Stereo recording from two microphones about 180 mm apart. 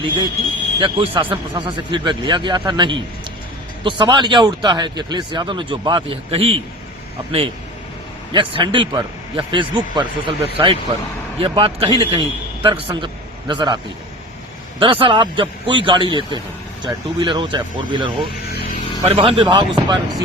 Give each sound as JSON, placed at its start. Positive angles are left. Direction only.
{"t": 0.8, "sound": "speech", "side_deg": -30}
{"t": 14.8, "sound": "speech", "side_deg": -30}